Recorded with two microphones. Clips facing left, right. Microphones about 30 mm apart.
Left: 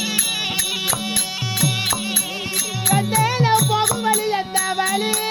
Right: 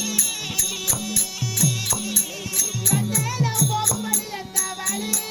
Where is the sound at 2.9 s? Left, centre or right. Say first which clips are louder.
Left 8 dB; left.